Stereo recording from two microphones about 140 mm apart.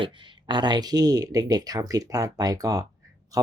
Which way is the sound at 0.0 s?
35° right (ahead or behind).